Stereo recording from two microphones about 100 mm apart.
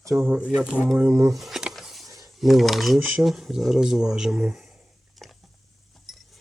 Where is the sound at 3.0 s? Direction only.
15° right (ahead or behind).